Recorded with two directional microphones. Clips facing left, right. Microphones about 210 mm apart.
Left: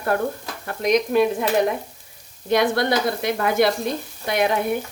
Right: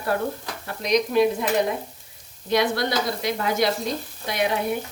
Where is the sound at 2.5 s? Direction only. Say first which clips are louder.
Left 3 dB; 55° left (ahead or behind).